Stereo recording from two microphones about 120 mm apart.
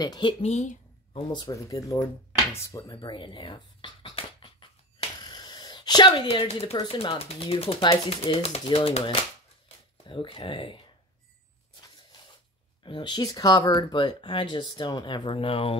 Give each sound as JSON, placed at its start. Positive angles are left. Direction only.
{"t": 0.0, "sound": "speech", "side_deg": 40}
{"t": 0.4, "sound": "speech", "side_deg": 65}
{"t": 1.1, "sound": "speech", "side_deg": 35}
{"t": 5.2, "sound": "a sound", "side_deg": 35}
{"t": 6.8, "sound": "speech", "side_deg": 45}
{"t": 12.8, "sound": "speech", "side_deg": 40}